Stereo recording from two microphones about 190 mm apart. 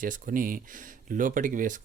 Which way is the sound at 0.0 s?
45° right (ahead or behind).